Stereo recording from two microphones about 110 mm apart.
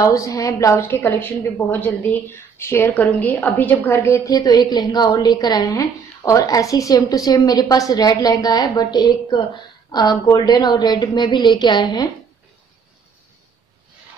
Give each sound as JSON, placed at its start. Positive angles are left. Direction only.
{"t": 0.0, "sound": "a woman's voice", "side_deg": 30}
{"t": 0.7, "sound": "a woman's voice", "side_deg": 15}